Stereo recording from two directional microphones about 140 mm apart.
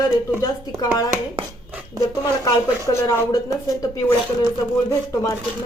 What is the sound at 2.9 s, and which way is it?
Speech, 20° left (ahead or behind).